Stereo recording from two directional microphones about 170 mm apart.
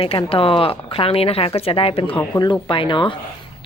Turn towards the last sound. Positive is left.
turn(degrees=30)  # may be behind; listen again after turning